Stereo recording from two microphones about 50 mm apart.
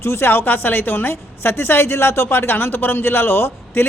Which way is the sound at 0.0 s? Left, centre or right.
Left.